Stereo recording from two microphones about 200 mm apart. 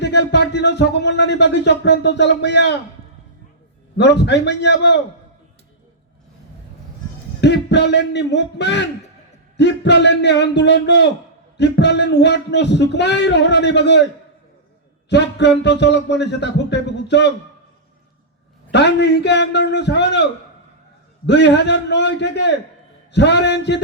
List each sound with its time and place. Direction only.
0.0 s speech: 60° left (ahead or behind)
3.9 s speech: 60° left (ahead or behind)
7.4 s speech: 60° left (ahead or behind)
15.1 s speech: 60° left (ahead or behind)
18.7 s speech: 60° left (ahead or behind)
21.2 s speech: 60° left (ahead or behind)